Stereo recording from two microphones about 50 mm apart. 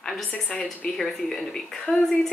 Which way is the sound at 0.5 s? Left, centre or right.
Centre.